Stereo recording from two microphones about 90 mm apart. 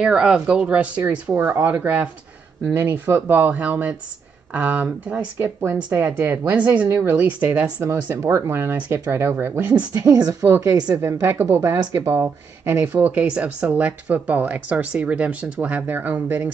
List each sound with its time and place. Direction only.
0.0 s speech: 10° right (ahead or behind)
8.2 s speech: 35° right (ahead or behind)
10.0 s speech: 40° right (ahead or behind); by 16.5 s 15° right (ahead or behind)